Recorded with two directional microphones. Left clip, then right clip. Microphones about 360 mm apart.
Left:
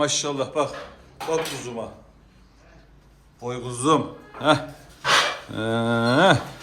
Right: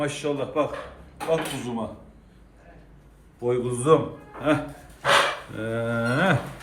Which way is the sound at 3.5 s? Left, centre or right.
Centre.